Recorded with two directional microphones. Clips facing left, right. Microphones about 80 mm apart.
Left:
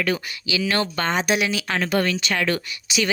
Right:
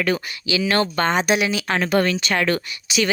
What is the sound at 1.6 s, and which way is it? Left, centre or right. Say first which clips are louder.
Speech: right 3 dB; right.